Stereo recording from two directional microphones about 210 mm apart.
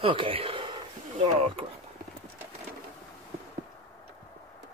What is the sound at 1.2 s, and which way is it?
Speech, 25° right (ahead or behind).